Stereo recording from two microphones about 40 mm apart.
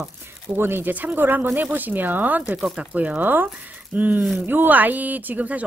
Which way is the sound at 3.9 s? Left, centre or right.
Right.